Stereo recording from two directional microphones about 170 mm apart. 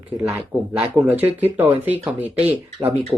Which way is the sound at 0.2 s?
15° right (ahead or behind).